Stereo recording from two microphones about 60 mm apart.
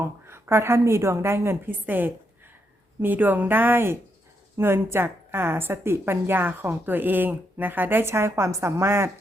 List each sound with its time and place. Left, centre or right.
0.0 s a woman's voice: right
1.9 s a woman's voice: right